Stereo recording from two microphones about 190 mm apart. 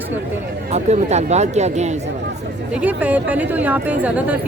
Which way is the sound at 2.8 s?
10° right (ahead or behind).